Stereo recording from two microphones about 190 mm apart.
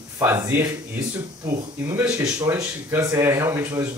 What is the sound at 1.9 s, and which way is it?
Speech, 15° right (ahead or behind).